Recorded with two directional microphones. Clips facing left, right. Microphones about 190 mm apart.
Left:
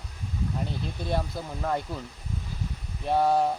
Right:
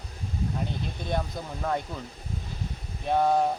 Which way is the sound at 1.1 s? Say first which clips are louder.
Left 1 dB; 5° left (ahead or behind).